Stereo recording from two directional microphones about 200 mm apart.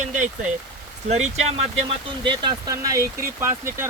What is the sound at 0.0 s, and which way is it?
Rain on surface, 35° right (ahead or behind).